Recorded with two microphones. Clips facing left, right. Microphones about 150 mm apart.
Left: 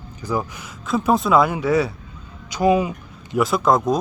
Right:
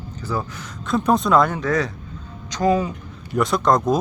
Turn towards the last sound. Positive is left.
turn(degrees=5)  # may be behind; listen again after turning